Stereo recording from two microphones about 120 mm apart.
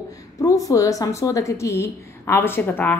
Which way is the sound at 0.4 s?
30° left (ahead or behind).